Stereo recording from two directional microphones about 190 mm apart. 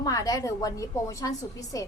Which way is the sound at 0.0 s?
20° left (ahead or behind).